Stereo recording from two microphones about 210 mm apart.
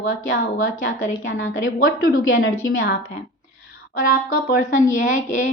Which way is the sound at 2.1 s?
70° left (ahead or behind).